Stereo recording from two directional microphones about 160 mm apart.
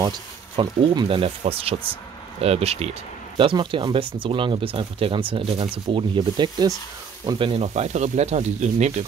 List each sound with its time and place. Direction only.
0.6 s speech: 30° right (ahead or behind)